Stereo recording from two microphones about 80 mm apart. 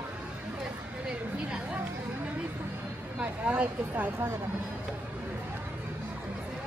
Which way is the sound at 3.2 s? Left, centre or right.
Centre.